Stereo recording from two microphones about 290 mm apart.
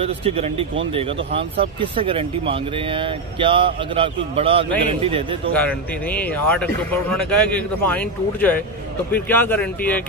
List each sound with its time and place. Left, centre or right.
0.0 s speech: centre
5.5 s speech: centre